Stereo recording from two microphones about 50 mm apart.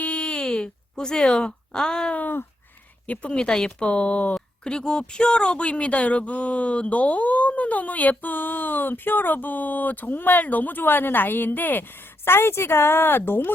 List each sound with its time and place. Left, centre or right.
0.0 s a sound: left
2.1 s speech: left
3.1 s speech: left
4.6 s speech: centre; by 11.9 s left
12.2 s speech: left